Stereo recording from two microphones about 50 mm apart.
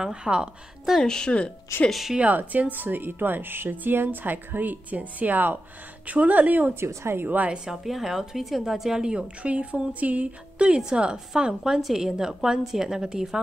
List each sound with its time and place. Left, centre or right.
0.0 s a woman's voice: centre
1.0 s speech: centre
1.9 s a woman's voice: centre
2.1 s a woman's voice: right
6.7 s a woman's voice: right
7.2 s a woman's voice: right
7.4 s a woman's voice: centre
7.7 s a woman's voice: centre